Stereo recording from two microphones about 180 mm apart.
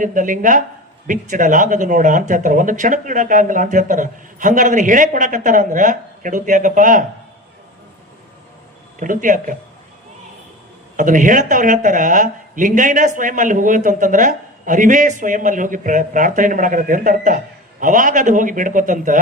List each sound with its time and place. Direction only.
0.0 s speech: 45° right (ahead or behind)
9.0 s speech: 45° right (ahead or behind)
10.9 s speech: 45° right (ahead or behind)